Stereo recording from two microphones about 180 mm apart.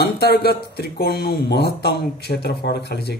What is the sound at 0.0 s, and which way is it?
A man's voice, 60° left (ahead or behind).